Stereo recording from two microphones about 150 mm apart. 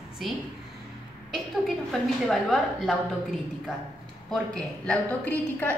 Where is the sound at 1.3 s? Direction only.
Centre (ahead or behind).